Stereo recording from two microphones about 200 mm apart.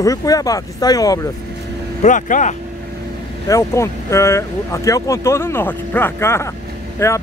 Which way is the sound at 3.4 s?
15° left (ahead or behind).